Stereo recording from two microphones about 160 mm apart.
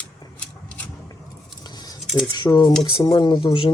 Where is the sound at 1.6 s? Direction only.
25° left (ahead or behind).